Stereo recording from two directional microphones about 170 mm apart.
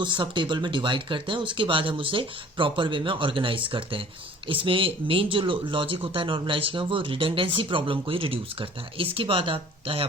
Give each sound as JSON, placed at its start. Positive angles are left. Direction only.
{"t": 0.0, "sound": "speech", "side_deg": -30}